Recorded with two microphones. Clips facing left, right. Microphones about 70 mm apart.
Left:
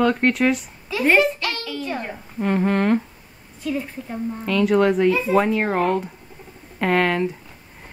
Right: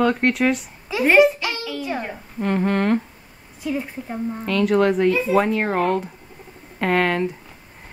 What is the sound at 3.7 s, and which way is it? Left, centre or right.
Speech, centre.